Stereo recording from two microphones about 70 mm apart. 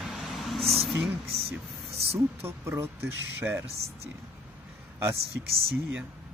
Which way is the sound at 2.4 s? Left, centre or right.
Right.